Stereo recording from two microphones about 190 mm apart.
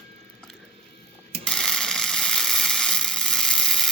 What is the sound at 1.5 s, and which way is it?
Mechanisms, centre (ahead or behind).